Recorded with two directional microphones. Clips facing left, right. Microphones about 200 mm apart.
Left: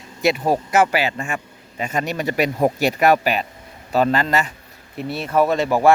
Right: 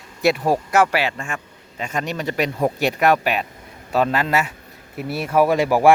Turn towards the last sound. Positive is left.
turn(degrees=-10)  # may be behind; listen again after turning